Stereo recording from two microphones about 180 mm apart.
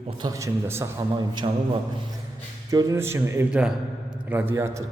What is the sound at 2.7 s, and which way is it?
A man's voice, 20° right (ahead or behind).